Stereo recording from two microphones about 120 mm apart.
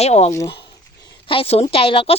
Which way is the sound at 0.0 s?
60° left (ahead or behind).